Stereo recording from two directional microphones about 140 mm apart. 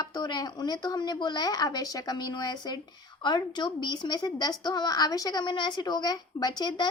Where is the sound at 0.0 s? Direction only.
30° left (ahead or behind).